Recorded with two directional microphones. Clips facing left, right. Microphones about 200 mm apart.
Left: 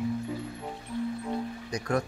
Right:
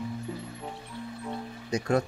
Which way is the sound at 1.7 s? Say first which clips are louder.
Right 4 dB; 25° right (ahead or behind).